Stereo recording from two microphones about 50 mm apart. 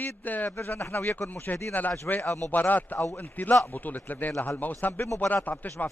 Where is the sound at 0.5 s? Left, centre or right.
Left.